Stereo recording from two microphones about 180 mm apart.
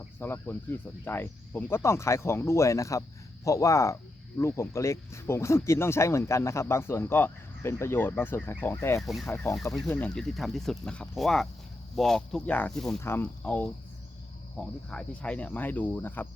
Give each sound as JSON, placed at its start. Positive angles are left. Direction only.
{"t": 0.2, "sound": "speech", "side_deg": 10}
{"t": 9.0, "sound": "speech", "side_deg": 0}
{"t": 9.2, "sound": "speech", "side_deg": 15}